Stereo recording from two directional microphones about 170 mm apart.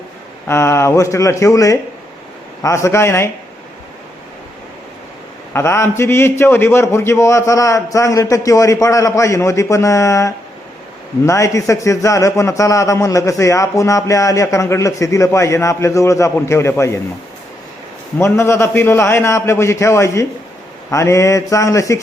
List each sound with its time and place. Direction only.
0.4 s a man's voice: 15° left (ahead or behind)
5.5 s a man's voice: 15° left (ahead or behind)
18.2 s a man's voice: 15° left (ahead or behind)